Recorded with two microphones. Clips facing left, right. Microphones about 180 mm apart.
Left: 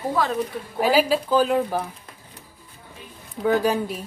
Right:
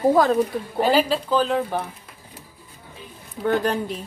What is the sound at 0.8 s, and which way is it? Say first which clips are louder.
Speech: even; 10° left (ahead or behind).